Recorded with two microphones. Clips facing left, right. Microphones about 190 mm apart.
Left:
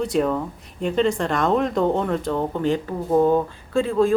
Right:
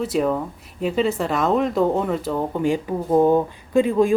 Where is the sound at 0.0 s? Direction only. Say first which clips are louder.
Even; 5° right (ahead or behind).